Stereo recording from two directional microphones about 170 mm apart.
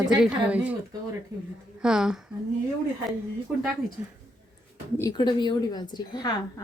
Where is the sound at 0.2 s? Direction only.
5° right (ahead or behind).